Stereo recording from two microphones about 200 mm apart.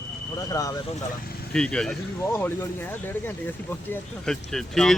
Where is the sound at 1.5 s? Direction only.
5° left (ahead or behind).